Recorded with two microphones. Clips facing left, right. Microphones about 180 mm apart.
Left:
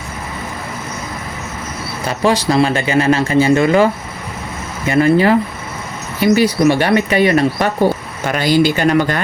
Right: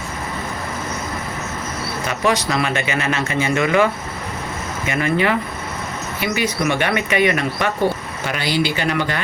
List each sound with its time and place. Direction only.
2.0 s speech: 30° left (ahead or behind)
4.9 s speech: 35° left (ahead or behind)